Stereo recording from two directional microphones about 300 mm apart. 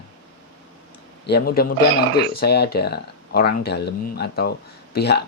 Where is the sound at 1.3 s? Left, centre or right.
Left.